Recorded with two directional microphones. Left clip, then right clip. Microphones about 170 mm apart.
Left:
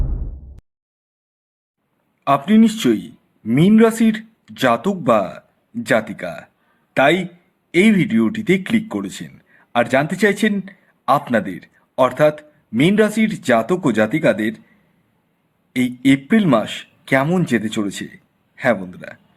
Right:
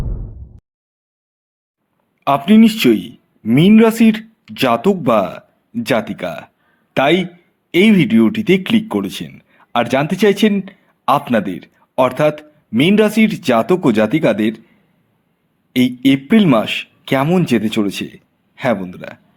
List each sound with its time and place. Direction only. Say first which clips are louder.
2.2 s speech: right 3 dB; 20° right (ahead or behind)
15.7 s speech: right 3 dB; 15° right (ahead or behind)